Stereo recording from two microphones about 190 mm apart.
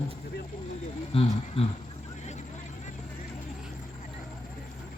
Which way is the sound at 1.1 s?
30° left (ahead or behind).